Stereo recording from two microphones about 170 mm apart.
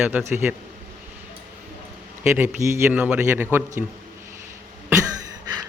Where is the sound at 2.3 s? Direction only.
15° right (ahead or behind).